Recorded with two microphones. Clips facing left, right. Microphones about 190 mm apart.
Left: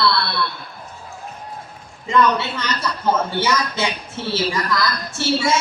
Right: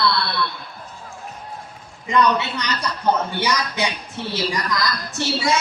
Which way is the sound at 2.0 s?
15° right (ahead or behind).